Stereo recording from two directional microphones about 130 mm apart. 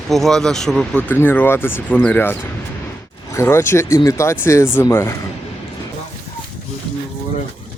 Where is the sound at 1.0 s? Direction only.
15° left (ahead or behind).